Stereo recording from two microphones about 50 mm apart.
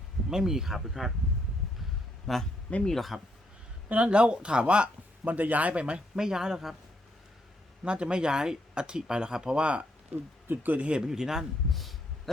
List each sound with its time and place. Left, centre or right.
0.3 s speech: centre
2.3 s speech: centre
3.8 s speech: right; by 6.7 s centre
7.9 s speech: centre
10.5 s speech: right
11.0 s speech: centre
11.7 s a sound: centre